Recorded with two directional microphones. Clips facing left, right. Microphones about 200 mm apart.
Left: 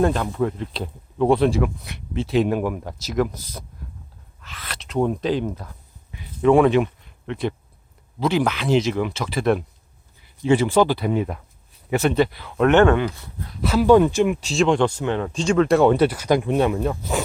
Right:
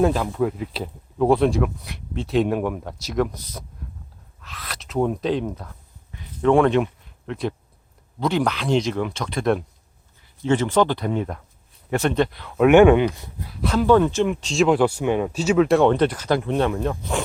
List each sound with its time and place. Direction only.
0.0 s speech: 5° right (ahead or behind)
6.1 s a sound: 5° left (ahead or behind)
7.3 s speech: centre (ahead or behind)
12.6 s speech: 10° right (ahead or behind)
13.5 s speech: centre (ahead or behind)
14.6 s speech: 5° right (ahead or behind)